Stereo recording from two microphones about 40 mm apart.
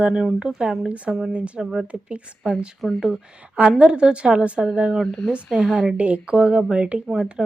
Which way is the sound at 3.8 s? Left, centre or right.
Right.